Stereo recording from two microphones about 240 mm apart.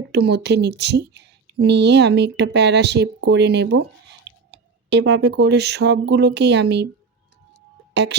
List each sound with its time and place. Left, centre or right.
0.1 s speech: right
8.0 s speech: right